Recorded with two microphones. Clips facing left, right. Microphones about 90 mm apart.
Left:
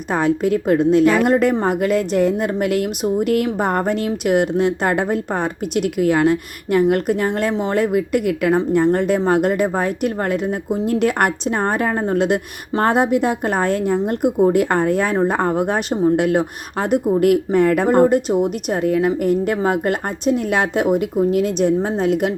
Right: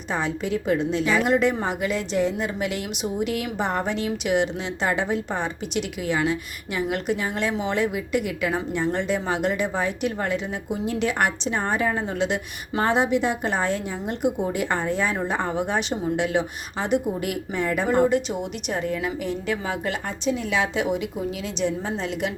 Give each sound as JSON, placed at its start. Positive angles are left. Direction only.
{"t": 0.1, "sound": "a woman's voice", "side_deg": 50}